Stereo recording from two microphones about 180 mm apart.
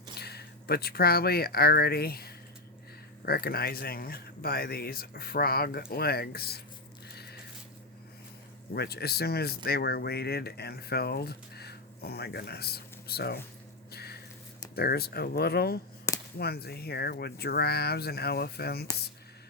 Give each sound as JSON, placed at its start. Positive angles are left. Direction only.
{"t": 0.1, "sound": "speech", "side_deg": 65}
{"t": 8.7, "sound": "speech", "side_deg": 65}
{"t": 13.9, "sound": "a sound", "side_deg": 60}
{"t": 14.8, "sound": "speech", "side_deg": 60}
{"t": 16.1, "sound": "a sound", "side_deg": 15}
{"t": 16.4, "sound": "speech", "side_deg": 60}